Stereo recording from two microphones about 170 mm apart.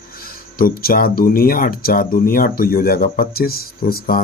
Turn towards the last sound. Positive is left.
turn(degrees=55)  # may be behind; listen again after turning